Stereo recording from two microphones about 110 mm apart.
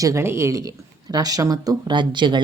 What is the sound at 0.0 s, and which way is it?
Speech, 25° right (ahead or behind).